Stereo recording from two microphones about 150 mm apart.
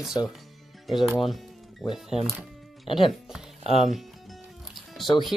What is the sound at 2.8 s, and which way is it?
Speech, 35° left (ahead or behind).